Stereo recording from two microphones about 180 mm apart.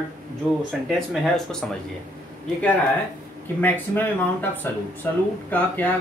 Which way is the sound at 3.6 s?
10° left (ahead or behind).